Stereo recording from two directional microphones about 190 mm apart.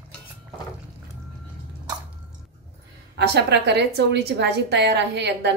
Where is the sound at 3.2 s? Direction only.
60° right (ahead or behind).